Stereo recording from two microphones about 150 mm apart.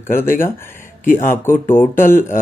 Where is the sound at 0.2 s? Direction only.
15° left (ahead or behind).